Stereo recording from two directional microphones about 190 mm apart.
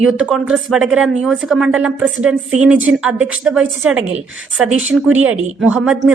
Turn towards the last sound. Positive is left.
turn(degrees=-5)  # may be behind; listen again after turning